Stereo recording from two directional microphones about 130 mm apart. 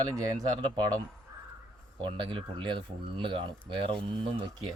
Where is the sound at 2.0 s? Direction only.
40° right (ahead or behind).